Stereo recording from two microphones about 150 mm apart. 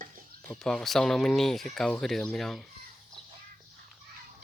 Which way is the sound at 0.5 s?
Centre (ahead or behind).